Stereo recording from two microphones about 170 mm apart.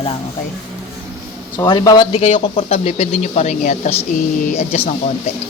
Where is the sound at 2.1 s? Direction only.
35° left (ahead or behind).